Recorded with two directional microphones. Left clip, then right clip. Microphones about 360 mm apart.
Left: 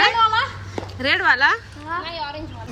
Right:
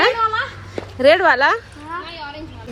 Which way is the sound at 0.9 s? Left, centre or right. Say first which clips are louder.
Right 5 dB; centre.